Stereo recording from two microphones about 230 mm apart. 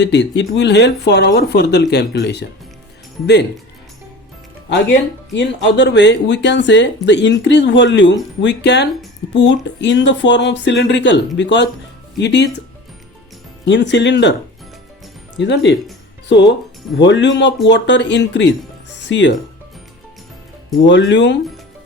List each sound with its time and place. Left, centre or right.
0.0 s speech: left
4.7 s speech: left
13.7 s speech: left
15.4 s speech: left
17.1 s speech: left
18.9 s music: left
20.8 s speech: left